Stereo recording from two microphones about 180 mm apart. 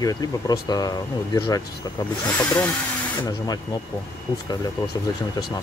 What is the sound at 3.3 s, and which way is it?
Speech, 20° left (ahead or behind).